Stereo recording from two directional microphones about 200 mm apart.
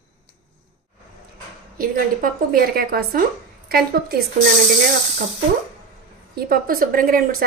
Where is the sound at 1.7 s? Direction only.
45° right (ahead or behind).